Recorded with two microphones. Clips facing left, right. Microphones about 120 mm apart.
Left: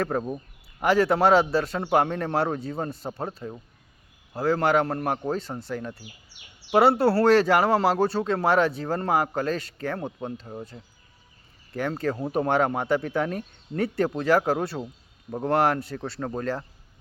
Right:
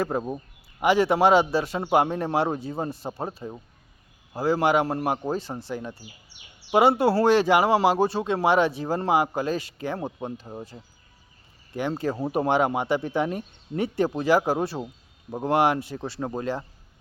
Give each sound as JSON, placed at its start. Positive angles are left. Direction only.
{"t": 0.0, "sound": "a man's voice", "side_deg": -5}
{"t": 11.7, "sound": "speech", "side_deg": -25}
{"t": 11.9, "sound": "speech", "side_deg": -5}
{"t": 13.0, "sound": "speech", "side_deg": -20}
{"t": 13.3, "sound": "speech", "side_deg": -5}